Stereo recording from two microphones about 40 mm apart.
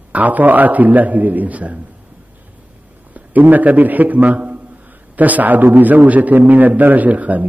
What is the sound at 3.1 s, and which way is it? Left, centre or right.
A man's voice, right.